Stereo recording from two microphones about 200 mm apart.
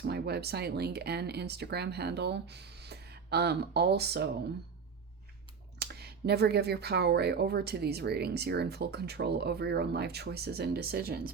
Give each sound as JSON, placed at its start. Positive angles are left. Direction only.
{"t": 0.1, "sound": "speech", "side_deg": -55}
{"t": 5.8, "sound": "speech", "side_deg": -55}